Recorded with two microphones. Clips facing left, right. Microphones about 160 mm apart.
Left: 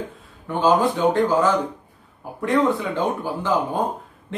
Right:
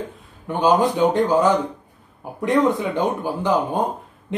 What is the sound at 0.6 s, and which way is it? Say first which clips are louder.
Speech: right 1 dB; 20° right (ahead or behind).